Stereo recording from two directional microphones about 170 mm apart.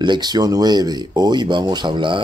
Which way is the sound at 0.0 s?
25° right (ahead or behind).